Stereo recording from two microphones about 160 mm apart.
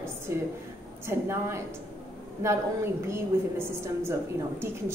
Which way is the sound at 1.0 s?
15° right (ahead or behind).